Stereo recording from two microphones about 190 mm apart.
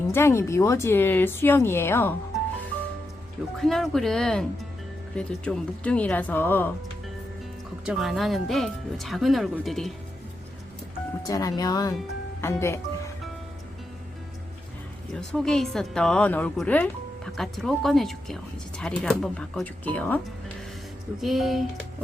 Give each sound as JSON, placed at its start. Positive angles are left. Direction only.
{"t": 0.1, "sound": "speech", "side_deg": 15}
{"t": 3.6, "sound": "a woman's voice", "side_deg": 0}
{"t": 7.9, "sound": "a woman's voice", "side_deg": 0}
{"t": 11.3, "sound": "speech", "side_deg": 20}
{"t": 15.1, "sound": "a woman's voice", "side_deg": 0}